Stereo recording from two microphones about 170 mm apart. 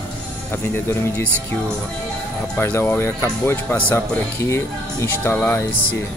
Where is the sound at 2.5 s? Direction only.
10° left (ahead or behind).